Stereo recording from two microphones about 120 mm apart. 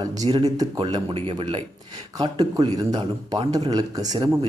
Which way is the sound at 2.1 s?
35° right (ahead or behind).